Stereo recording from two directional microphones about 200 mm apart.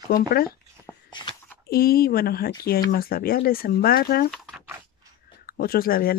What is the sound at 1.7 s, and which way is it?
Speech, 50° left (ahead or behind).